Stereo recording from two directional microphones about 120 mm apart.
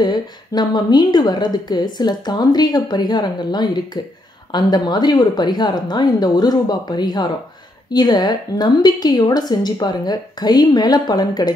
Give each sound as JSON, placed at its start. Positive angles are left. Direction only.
{"t": 0.0, "sound": "a woman's voice", "side_deg": 35}